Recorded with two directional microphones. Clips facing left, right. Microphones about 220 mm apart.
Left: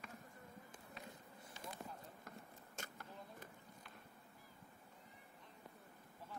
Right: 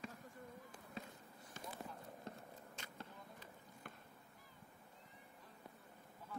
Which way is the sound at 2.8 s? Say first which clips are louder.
Left 7 dB; 45° left (ahead or behind).